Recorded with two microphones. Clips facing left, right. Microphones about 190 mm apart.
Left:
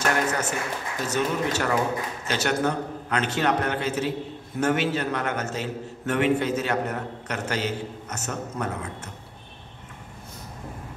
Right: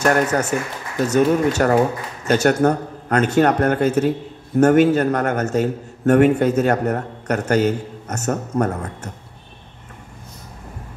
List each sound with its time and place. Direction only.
0.0 s a man's voice: 50° right (ahead or behind)